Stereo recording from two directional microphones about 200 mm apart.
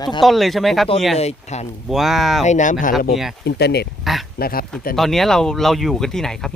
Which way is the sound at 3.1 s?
Centre (ahead or behind).